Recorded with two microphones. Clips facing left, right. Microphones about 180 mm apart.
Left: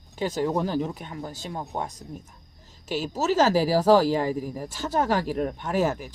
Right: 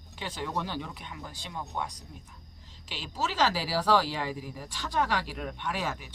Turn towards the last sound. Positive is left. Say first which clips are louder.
# left 9 dB
turn(degrees=45)  # may be behind; listen again after turning